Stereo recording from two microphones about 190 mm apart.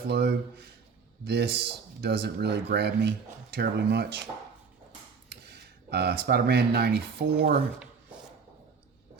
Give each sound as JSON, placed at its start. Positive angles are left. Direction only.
{"t": 0.1, "sound": "speech", "side_deg": -60}
{"t": 5.3, "sound": "speech", "side_deg": -60}